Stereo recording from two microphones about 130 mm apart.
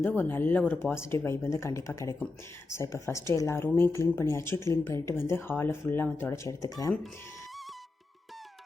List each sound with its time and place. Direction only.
0.2 s speech: 15° left (ahead or behind)